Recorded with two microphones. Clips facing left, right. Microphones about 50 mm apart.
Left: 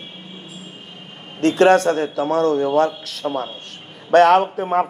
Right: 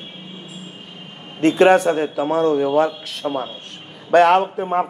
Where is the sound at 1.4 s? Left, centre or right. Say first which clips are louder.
Even; centre.